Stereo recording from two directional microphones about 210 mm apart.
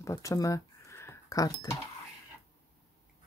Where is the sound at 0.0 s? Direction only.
15° left (ahead or behind).